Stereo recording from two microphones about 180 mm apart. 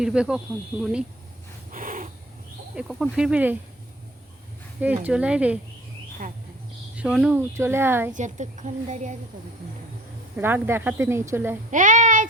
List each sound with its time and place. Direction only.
0.0 s speech: 5° right (ahead or behind)
1.7 s a sound: 45° right (ahead or behind)
2.7 s speech: 5° right (ahead or behind)
4.8 s speech: 10° right (ahead or behind)
6.9 s speech: 5° right (ahead or behind)
8.1 s a woman's voice: 40° right (ahead or behind)
10.3 s speech: 10° right (ahead or behind)
11.7 s speech: 45° right (ahead or behind)